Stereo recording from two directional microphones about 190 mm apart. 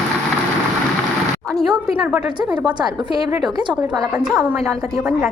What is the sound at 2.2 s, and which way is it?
A woman's voice, 20° right (ahead or behind).